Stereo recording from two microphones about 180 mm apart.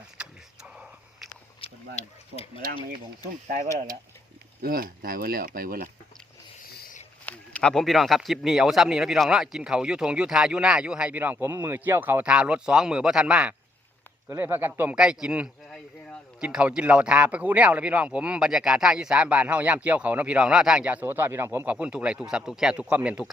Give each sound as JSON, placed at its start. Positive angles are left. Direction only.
{"t": 0.2, "sound": "a sound", "side_deg": -5}
{"t": 1.6, "sound": "speech", "side_deg": 35}
{"t": 4.6, "sound": "speech", "side_deg": -55}
{"t": 6.7, "sound": "wild animals", "side_deg": 55}
{"t": 7.3, "sound": "speech", "side_deg": 5}